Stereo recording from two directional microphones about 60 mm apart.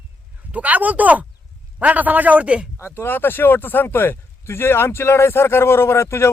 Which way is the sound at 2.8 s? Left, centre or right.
Left.